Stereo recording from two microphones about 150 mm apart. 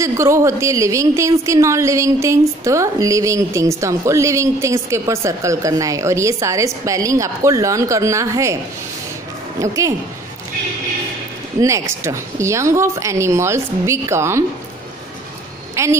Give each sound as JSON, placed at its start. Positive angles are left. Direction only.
{"t": 0.0, "sound": "a woman's voice", "side_deg": -20}
{"t": 9.6, "sound": "a woman's voice", "side_deg": -20}
{"t": 11.6, "sound": "a woman's voice", "side_deg": -20}
{"t": 15.7, "sound": "speech", "side_deg": -20}